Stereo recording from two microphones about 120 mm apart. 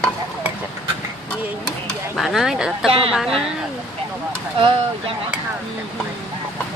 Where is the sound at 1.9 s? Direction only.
Centre (ahead or behind).